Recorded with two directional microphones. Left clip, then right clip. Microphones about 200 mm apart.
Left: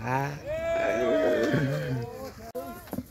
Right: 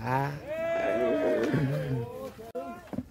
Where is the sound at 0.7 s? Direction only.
Centre (ahead or behind).